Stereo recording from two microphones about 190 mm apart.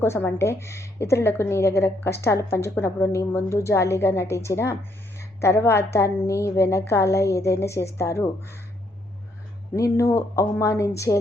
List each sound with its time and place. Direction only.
0.0 s a woman's voice: 10° left (ahead or behind)
9.7 s a woman's voice: 15° left (ahead or behind)